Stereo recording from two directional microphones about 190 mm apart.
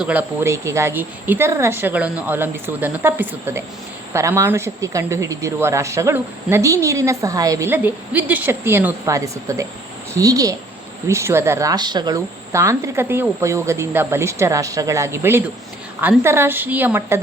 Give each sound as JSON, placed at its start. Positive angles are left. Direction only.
{"t": 0.0, "sound": "speech", "side_deg": -10}